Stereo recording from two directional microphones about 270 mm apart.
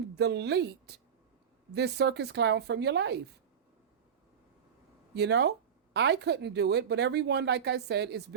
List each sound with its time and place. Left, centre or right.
0.2 s speech: right
5.1 s speech: right